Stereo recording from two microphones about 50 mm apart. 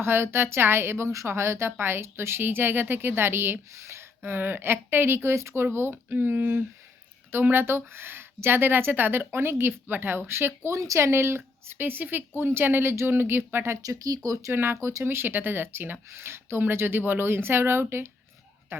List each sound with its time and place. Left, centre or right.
0.0 s a woman's voice: right
5.6 s a woman's voice: right
7.4 s a woman's voice: right
10.7 s a woman's voice: right
14.8 s speech: right
15.0 s a woman's voice: right